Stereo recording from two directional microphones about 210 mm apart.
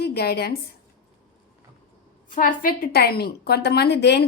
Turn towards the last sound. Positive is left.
turn(degrees=55)  # may be behind; listen again after turning